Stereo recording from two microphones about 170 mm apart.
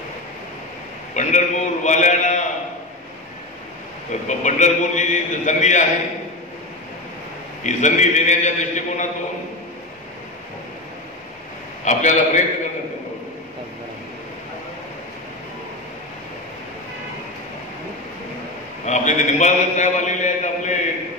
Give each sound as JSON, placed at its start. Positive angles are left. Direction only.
{"t": 1.1, "sound": "a man's voice", "side_deg": 45}
{"t": 4.1, "sound": "a man's voice", "side_deg": 45}
{"t": 7.6, "sound": "a man's voice", "side_deg": 45}
{"t": 11.8, "sound": "a man's voice", "side_deg": 45}
{"t": 18.9, "sound": "a man's voice", "side_deg": 45}